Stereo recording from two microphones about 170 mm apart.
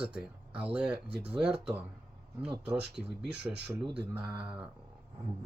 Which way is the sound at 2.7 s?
80° right.